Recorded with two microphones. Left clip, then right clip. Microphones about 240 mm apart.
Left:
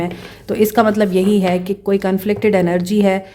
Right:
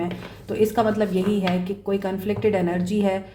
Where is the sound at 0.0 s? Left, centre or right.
Left.